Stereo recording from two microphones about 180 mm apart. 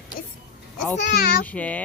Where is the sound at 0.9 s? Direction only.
55° left (ahead or behind).